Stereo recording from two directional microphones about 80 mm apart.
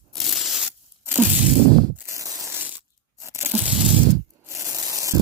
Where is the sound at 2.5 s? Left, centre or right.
Right.